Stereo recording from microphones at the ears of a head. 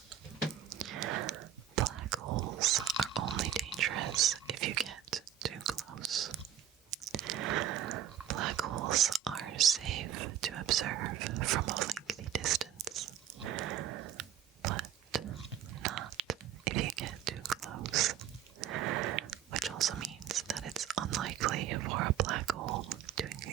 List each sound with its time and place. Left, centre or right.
0.7 s whispering: right